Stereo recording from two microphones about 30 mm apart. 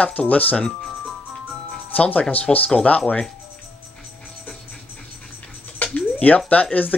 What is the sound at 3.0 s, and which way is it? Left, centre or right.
Speech, left.